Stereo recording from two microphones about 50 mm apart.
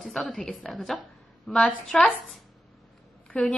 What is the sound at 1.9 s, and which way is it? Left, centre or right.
Speech, centre.